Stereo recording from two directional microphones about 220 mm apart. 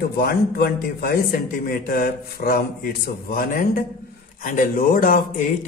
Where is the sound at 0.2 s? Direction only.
45° left (ahead or behind).